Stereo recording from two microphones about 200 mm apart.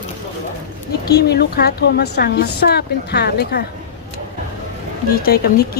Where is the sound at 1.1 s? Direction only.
55° left (ahead or behind).